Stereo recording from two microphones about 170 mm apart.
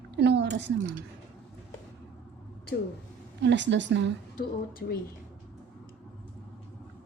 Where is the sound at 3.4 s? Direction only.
90° right.